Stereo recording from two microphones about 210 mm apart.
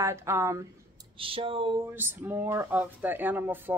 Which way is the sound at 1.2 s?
25° right (ahead or behind).